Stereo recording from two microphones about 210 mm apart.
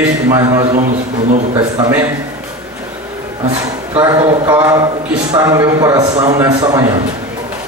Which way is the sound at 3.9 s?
20° right (ahead or behind).